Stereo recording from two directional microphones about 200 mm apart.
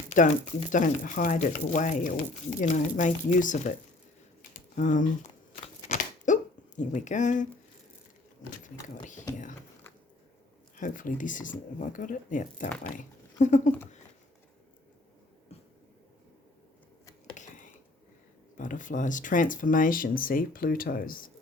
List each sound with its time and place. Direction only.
0.1 s speech: 40° left (ahead or behind)
5.9 s a sound: 40° left (ahead or behind)
8.6 s speech: 40° left (ahead or behind)
10.8 s speech: 40° left (ahead or behind)
12.6 s speech: 5° left (ahead or behind)
13.0 s speech: 40° left (ahead or behind)
17.3 s a sound: 40° left (ahead or behind)
18.5 s speech: 40° left (ahead or behind)